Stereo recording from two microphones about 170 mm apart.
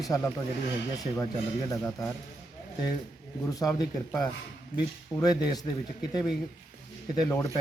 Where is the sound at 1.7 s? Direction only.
20° left (ahead or behind).